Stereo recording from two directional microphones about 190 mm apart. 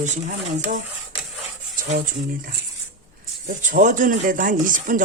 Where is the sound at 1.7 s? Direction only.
40° right (ahead or behind).